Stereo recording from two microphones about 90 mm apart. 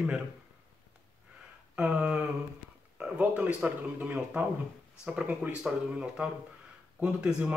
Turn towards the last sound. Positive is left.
turn(degrees=-15)  # may be behind; listen again after turning